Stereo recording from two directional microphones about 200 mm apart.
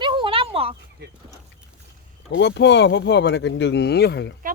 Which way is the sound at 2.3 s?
60° left (ahead or behind).